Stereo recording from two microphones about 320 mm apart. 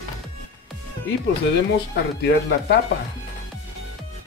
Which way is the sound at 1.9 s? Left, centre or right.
Left.